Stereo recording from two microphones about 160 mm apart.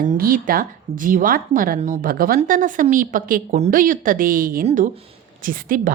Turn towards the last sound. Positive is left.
turn(degrees=-60)  # may be behind; listen again after turning